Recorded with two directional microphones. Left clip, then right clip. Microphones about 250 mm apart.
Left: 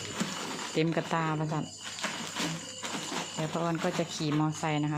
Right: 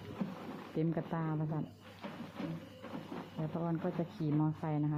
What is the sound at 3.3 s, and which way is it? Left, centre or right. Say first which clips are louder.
Speech: left 6 dB; centre.